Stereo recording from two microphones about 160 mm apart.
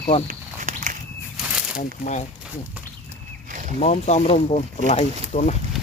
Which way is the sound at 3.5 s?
50° right (ahead or behind).